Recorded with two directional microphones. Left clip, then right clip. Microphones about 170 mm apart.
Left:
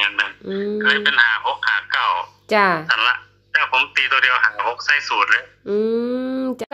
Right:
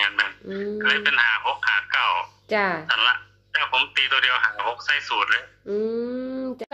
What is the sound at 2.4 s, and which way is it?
Speech, 35° left (ahead or behind).